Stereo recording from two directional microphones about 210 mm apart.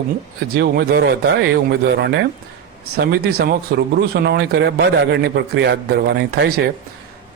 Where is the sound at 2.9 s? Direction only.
50° right (ahead or behind).